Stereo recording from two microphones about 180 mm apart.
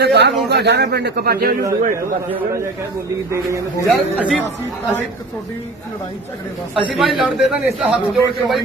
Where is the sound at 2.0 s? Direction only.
15° right (ahead or behind).